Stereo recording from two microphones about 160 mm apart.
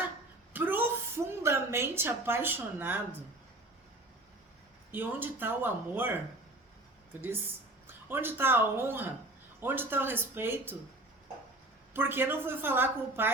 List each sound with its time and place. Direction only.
0.5 s a sound: 10° right (ahead or behind)
4.9 s a woman's voice: 10° right (ahead or behind)
11.9 s a woman's voice: 15° right (ahead or behind)